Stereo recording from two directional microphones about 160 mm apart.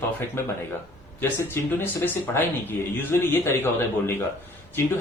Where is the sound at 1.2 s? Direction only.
15° left (ahead or behind).